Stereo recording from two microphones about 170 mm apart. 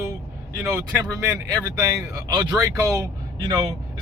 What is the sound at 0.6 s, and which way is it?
Speech, 15° right (ahead or behind).